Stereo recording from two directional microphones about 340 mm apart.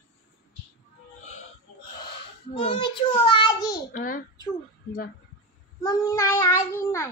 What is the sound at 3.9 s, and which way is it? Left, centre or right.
Speech, left.